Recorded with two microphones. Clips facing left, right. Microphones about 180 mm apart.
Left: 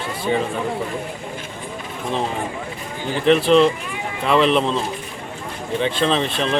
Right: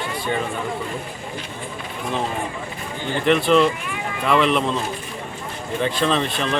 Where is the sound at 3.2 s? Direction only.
Centre (ahead or behind).